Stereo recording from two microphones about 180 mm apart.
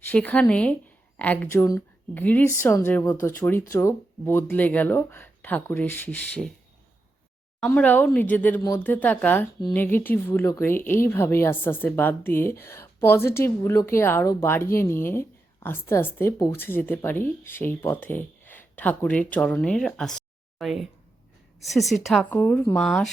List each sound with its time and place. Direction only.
0.1 s speech: 10° left (ahead or behind)
7.6 s speech: 5° left (ahead or behind)